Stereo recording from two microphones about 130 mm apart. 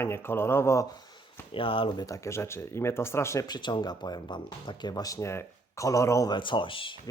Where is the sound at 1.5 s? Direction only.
45° left (ahead or behind).